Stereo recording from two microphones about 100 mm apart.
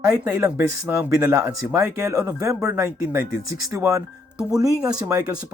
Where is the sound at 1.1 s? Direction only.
35° right (ahead or behind).